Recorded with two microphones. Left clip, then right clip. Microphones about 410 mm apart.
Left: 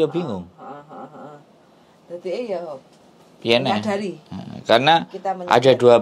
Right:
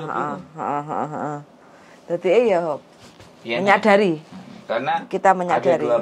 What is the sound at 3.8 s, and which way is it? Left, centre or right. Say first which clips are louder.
Speech: right 10 dB; right.